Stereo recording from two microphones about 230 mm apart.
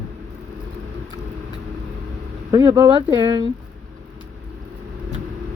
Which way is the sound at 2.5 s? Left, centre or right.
Centre.